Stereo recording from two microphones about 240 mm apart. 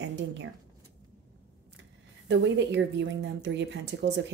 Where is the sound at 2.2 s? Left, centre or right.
Right.